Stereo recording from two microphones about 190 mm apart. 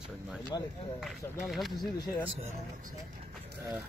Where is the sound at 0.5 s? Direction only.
20° left (ahead or behind).